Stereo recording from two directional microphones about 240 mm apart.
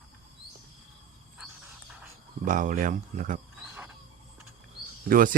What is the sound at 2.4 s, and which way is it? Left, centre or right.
A man's voice, right.